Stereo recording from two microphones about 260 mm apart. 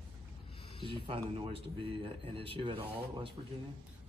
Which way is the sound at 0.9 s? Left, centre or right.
Right.